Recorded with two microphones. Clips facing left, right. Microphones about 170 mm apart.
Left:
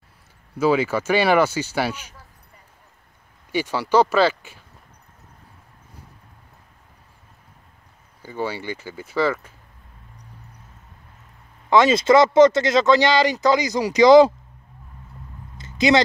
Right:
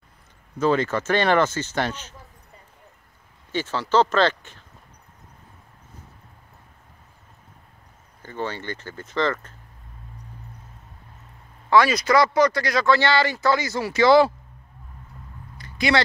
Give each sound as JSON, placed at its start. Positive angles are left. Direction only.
{"t": 0.6, "sound": "speech", "side_deg": 10}
{"t": 3.5, "sound": "speech", "side_deg": 10}
{"t": 8.2, "sound": "speech", "side_deg": 10}
{"t": 11.7, "sound": "speech", "side_deg": 25}
{"t": 15.5, "sound": "a sound", "side_deg": 20}